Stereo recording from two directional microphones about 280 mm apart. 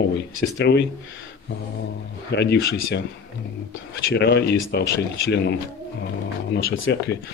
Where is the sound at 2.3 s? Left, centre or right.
Left.